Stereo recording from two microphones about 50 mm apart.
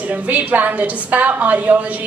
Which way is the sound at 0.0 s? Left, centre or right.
Right.